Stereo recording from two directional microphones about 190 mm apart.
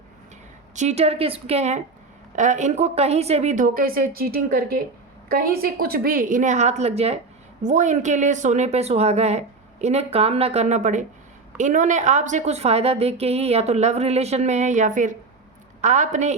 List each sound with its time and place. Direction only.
0.8 s a woman's voice: 35° right (ahead or behind)